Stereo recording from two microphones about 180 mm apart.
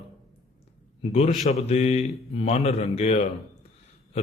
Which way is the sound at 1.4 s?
35° left (ahead or behind).